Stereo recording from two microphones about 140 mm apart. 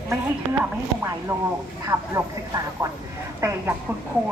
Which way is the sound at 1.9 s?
20° right (ahead or behind).